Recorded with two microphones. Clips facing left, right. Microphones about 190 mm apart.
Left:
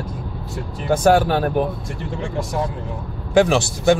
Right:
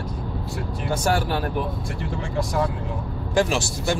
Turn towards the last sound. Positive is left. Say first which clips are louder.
# left 8 dB
turn(degrees=60)  # may be behind; listen again after turning